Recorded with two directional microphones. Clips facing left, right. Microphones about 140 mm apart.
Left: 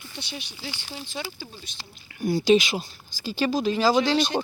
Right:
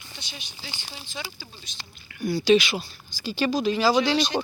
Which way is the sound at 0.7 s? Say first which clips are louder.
Left 4 dB; 20° right (ahead or behind).